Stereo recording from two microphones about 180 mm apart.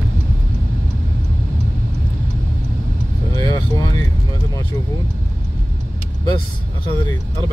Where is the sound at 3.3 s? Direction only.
20° left (ahead or behind).